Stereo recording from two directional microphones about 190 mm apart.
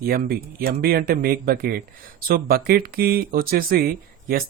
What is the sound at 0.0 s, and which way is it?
Speech, 50° right (ahead or behind).